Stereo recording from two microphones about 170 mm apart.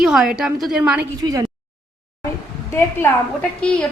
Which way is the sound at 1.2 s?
20° right (ahead or behind).